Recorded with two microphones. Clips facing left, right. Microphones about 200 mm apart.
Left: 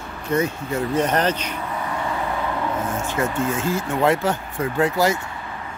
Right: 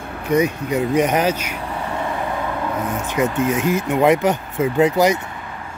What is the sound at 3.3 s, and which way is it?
Speech, 20° right (ahead or behind).